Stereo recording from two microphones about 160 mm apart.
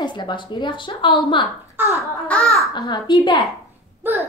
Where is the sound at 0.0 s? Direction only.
30° left (ahead or behind).